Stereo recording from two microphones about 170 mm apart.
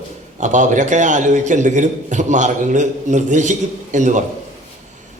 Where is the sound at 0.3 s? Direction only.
45° right (ahead or behind).